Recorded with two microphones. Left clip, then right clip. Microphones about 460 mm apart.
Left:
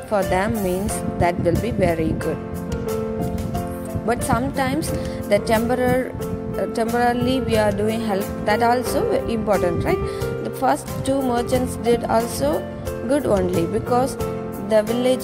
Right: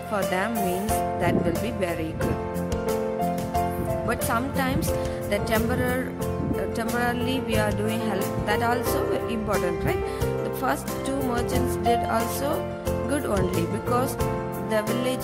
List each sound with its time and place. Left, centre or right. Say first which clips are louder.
0.1 s speech: left 6 dB; centre
4.1 s speech: left 8 dB; centre